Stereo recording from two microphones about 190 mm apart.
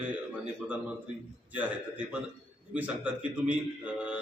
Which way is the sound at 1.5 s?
10° right (ahead or behind).